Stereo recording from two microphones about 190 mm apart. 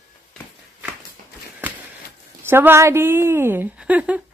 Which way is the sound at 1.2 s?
45° right (ahead or behind).